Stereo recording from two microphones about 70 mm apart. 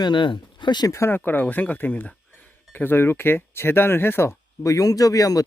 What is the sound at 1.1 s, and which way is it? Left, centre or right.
Speech, left.